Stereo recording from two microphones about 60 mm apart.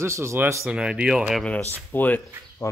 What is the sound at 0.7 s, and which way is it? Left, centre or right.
Speech, centre.